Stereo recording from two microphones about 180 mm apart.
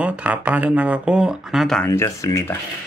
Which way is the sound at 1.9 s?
15° left (ahead or behind).